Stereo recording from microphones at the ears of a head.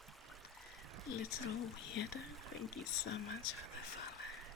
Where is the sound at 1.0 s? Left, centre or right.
Left.